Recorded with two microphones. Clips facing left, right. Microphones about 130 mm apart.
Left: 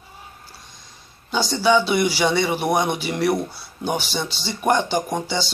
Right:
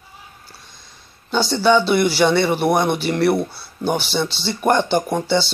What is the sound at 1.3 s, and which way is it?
A man's voice, 10° left (ahead or behind).